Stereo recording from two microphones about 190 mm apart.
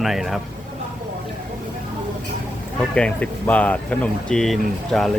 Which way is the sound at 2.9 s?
5° left (ahead or behind).